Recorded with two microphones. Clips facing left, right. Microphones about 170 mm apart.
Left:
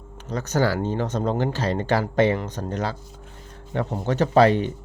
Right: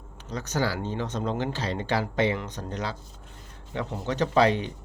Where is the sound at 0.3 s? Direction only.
50° left (ahead or behind).